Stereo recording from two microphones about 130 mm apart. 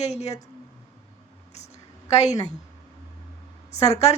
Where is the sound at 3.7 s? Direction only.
55° left (ahead or behind).